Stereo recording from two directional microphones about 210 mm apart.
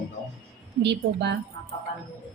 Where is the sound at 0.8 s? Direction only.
55° right (ahead or behind).